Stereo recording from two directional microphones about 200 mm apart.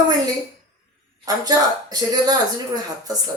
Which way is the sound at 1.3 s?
20° right (ahead or behind).